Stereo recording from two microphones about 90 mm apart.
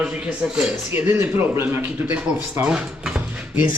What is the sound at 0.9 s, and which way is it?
A man's voice, 25° right (ahead or behind).